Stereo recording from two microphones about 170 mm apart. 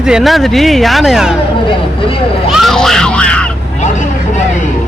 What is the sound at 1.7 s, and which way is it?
Speech, 30° left (ahead or behind).